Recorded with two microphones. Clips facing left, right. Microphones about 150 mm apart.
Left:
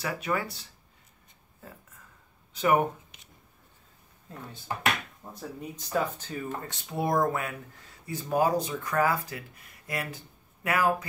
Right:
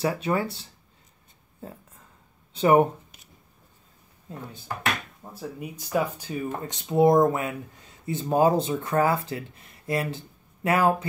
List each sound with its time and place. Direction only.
0.0 s speech: 30° right (ahead or behind)
1.6 s a sound: 30° right (ahead or behind)
2.5 s speech: 30° right (ahead or behind)
5.3 s speech: 10° right (ahead or behind); by 11.1 s 25° right (ahead or behind)